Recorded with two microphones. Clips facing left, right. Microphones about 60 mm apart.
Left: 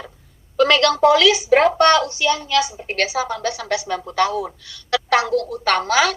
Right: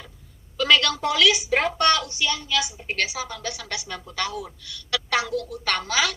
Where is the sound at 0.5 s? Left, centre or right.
Left.